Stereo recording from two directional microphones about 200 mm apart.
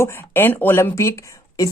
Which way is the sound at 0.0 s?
10° left (ahead or behind).